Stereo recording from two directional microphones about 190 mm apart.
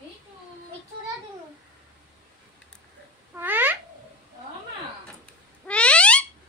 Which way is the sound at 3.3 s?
10° right (ahead or behind).